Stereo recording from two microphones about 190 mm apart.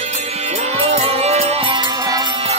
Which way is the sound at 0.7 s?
30° right (ahead or behind).